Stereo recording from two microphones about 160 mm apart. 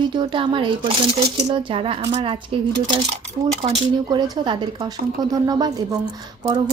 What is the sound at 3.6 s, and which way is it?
Speech, 30° right (ahead or behind).